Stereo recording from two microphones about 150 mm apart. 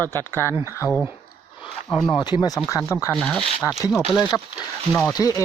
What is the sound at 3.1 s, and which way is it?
Speech, 5° left (ahead or behind).